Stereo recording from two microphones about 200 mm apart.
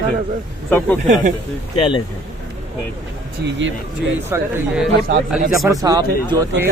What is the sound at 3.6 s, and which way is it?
Speech, 65° right (ahead or behind).